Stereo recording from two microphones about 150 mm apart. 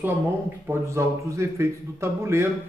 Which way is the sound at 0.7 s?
20° right (ahead or behind).